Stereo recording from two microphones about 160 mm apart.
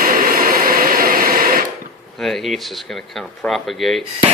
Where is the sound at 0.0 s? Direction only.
60° right (ahead or behind).